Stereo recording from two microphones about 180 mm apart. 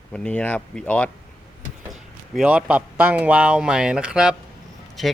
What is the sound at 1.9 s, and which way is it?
A man's voice, 5° right (ahead or behind).